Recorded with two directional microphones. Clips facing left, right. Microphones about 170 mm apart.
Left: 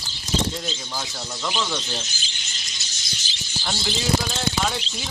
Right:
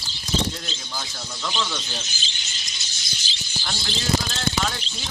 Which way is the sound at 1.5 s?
10° left (ahead or behind).